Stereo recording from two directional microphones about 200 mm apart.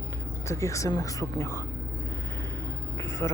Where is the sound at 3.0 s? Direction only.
15° left (ahead or behind).